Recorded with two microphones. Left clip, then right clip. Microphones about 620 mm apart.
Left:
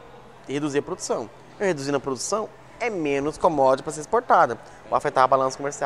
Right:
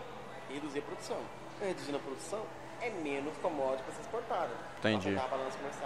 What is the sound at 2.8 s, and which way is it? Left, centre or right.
Speech, left.